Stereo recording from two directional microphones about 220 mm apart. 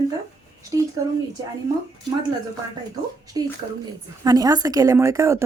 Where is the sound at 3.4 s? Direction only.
15° right (ahead or behind).